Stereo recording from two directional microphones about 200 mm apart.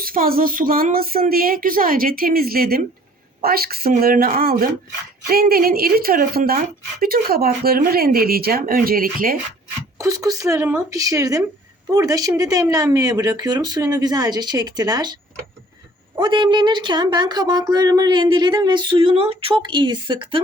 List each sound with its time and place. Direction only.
0.0 s speech: 45° right (ahead or behind)
10.0 s speech: 15° right (ahead or behind)